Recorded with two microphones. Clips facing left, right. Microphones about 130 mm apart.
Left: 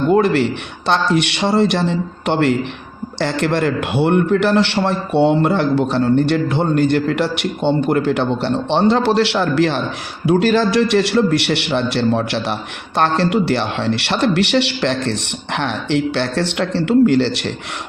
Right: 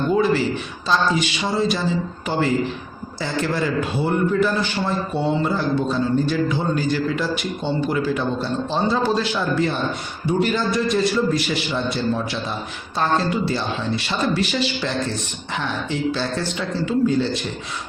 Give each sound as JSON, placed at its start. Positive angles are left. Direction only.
{"t": 0.1, "sound": "a man's voice", "side_deg": 65}